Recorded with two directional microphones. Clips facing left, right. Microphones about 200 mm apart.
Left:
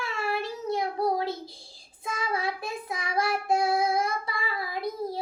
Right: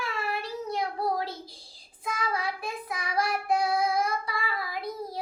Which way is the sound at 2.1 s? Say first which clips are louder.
Left 2 dB; 25° left (ahead or behind).